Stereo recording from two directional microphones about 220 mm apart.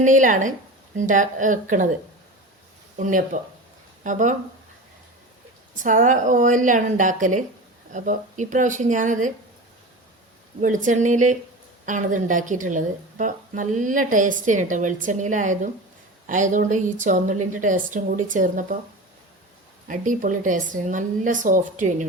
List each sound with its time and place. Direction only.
0.0 s a woman's voice: 35° right (ahead or behind)
3.0 s a woman's voice: 35° right (ahead or behind)
5.8 s a woman's voice: 35° right (ahead or behind)
10.6 s a woman's voice: 35° right (ahead or behind)
19.9 s a woman's voice: 35° right (ahead or behind)